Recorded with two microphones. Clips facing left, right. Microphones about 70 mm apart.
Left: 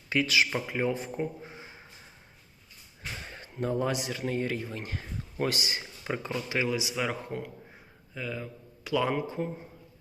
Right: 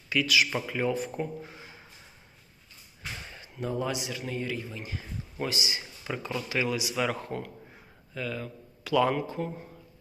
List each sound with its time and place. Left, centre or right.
0.1 s speech: left
0.7 s speech: left
3.3 s a man's voice: left
6.9 s a man's voice: centre